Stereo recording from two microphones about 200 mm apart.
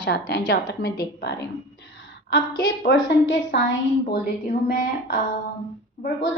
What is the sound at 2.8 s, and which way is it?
Speech, 60° left (ahead or behind).